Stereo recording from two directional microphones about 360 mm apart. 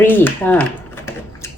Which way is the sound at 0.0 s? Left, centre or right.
Centre.